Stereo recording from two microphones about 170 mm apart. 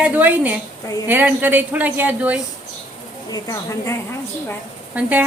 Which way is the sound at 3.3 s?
20° left (ahead or behind).